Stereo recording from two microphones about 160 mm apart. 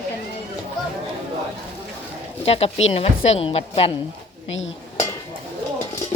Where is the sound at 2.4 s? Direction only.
40° left (ahead or behind).